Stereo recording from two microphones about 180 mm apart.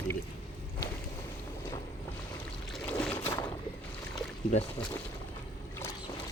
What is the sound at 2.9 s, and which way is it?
Boat, 5° left (ahead or behind).